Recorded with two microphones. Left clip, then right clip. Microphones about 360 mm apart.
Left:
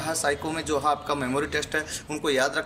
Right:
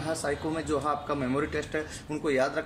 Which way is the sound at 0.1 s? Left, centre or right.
Left.